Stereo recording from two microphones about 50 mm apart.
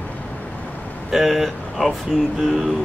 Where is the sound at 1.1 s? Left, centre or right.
Centre.